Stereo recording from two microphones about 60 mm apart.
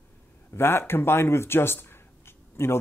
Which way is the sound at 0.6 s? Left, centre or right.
Left.